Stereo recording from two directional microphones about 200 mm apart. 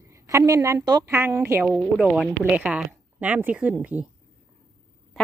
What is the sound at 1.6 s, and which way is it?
A woman's voice, centre (ahead or behind).